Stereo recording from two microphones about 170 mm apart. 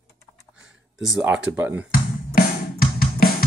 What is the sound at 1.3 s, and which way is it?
Speech, 10° right (ahead or behind).